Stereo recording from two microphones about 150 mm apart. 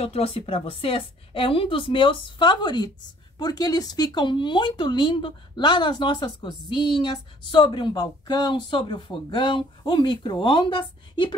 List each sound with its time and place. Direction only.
0.0 s speech: 40° left (ahead or behind)